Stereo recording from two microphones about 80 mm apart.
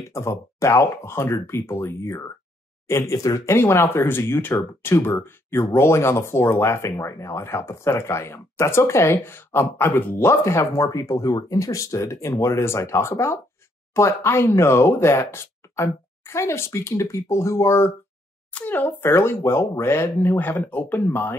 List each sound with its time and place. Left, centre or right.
0.1 s speech: left
3.2 s speech: left
18.5 s speech: left